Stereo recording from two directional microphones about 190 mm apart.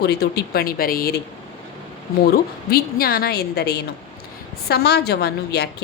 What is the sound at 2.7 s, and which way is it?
A woman's voice, 50° left (ahead or behind).